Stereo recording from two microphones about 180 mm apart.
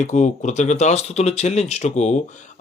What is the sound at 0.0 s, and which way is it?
Speech, 40° left (ahead or behind).